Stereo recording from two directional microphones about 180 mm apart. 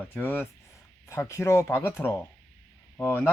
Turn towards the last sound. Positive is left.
turn(degrees=10)  # may be behind; listen again after turning